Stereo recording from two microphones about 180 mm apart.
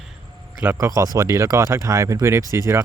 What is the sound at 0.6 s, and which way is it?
Speech, 15° right (ahead or behind).